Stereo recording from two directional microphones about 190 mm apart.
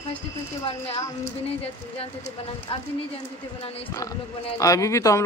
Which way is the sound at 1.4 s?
30° left (ahead or behind).